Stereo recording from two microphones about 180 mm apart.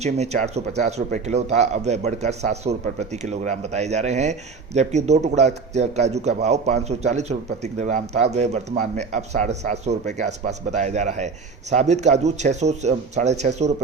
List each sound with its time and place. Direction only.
0.0 s speech: 40° right (ahead or behind)